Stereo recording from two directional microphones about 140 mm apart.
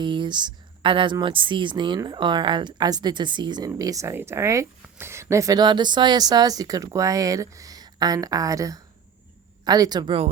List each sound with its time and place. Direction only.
0.0 s speech: 35° right (ahead or behind)